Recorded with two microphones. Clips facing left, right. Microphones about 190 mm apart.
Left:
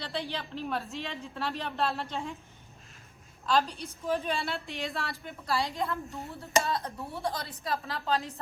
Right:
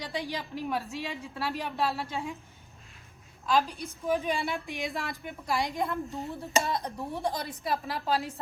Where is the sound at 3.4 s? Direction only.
10° right (ahead or behind).